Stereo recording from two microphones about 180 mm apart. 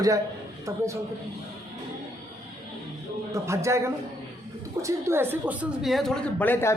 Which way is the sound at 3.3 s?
15° right (ahead or behind).